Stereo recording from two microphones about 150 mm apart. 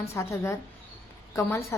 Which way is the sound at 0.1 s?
15° left (ahead or behind).